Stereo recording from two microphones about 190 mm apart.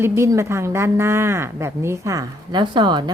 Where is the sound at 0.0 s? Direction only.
15° right (ahead or behind).